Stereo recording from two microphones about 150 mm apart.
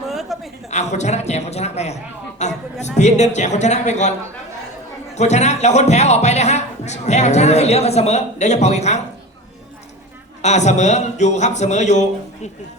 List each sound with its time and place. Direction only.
0.0 s a sound: centre (ahead or behind)
0.7 s speech: 50° left (ahead or behind)
2.4 s a sound: 50° left (ahead or behind)
2.8 s speech: 50° left (ahead or behind)
5.1 s speech: 50° left (ahead or behind)
10.4 s speech: 50° left (ahead or behind)